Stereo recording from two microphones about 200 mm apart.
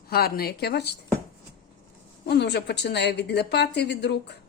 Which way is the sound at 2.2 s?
55° left (ahead or behind).